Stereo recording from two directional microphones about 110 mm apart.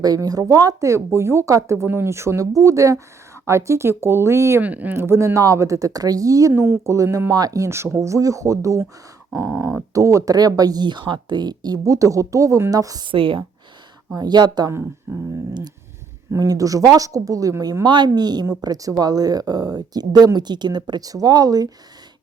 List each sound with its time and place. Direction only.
0.0 s speech: 35° right (ahead or behind)
4.6 s speech: 15° right (ahead or behind); by 13.1 s 35° right (ahead or behind)
13.1 s speech: 50° right (ahead or behind)
14.2 s speech: 40° right (ahead or behind)
16.3 s speech: 30° right (ahead or behind)